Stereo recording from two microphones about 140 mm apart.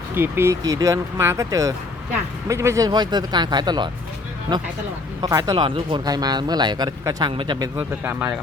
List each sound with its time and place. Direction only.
0.1 s speech: 15° right (ahead or behind); by 7.7 s 35° right (ahead or behind)
7.8 s speech: 15° right (ahead or behind)